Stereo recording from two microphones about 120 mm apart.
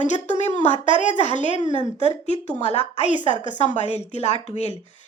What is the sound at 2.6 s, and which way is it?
Speech, 60° left (ahead or behind).